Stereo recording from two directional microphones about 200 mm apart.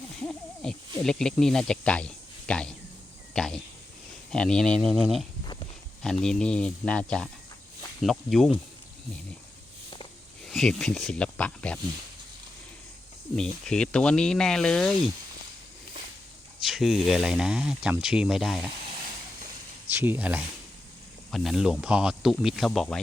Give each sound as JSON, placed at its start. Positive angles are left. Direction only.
{"t": 0.2, "sound": "owl", "side_deg": 5}
{"t": 3.3, "sound": "a sound", "side_deg": 5}
{"t": 4.3, "sound": "speech", "side_deg": 5}
{"t": 6.2, "sound": "speech", "side_deg": 5}
{"t": 10.4, "sound": "speech", "side_deg": 0}
{"t": 13.3, "sound": "speech", "side_deg": 5}
{"t": 16.6, "sound": "speech", "side_deg": 0}
{"t": 19.9, "sound": "speech", "side_deg": -10}